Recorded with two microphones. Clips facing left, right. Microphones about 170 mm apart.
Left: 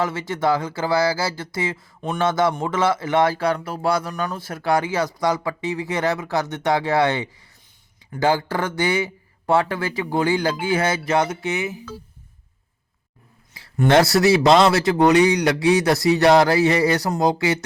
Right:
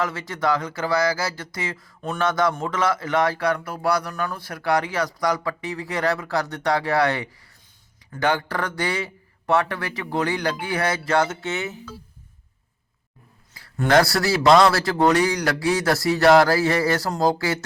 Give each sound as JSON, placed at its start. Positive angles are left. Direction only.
{"t": 0.0, "sound": "speech", "side_deg": 25}
{"t": 13.8, "sound": "speech", "side_deg": 25}